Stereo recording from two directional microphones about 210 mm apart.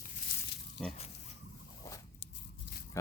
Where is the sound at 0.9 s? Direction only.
30° left (ahead or behind).